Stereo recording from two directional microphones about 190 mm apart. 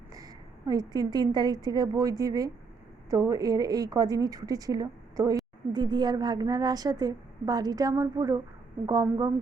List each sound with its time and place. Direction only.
0.7 s a woman's voice: 20° right (ahead or behind)